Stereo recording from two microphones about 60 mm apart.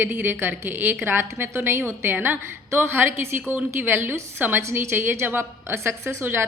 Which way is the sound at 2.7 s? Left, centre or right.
Right.